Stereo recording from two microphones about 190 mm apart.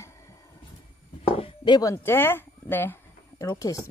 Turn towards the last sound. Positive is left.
turn(degrees=20)  # may be behind; listen again after turning